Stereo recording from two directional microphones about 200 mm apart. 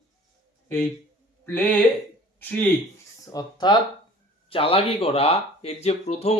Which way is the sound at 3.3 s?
20° left (ahead or behind).